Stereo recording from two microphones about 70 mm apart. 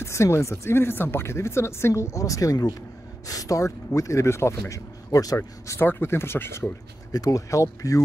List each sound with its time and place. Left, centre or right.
0.0 s a man's voice: left
5.8 s speech: left
7.1 s speech: left